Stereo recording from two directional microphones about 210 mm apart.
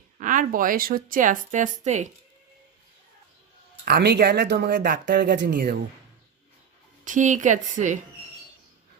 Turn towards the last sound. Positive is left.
turn(degrees=-35)  # may be behind; listen again after turning